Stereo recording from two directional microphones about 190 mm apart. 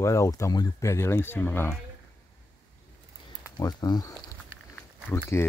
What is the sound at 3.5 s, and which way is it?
Speech, 20° left (ahead or behind).